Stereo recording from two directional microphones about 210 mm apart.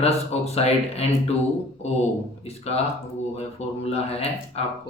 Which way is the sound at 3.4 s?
30° left (ahead or behind).